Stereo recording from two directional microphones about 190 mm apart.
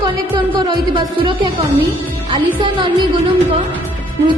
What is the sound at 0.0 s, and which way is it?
Music, 25° right (ahead or behind).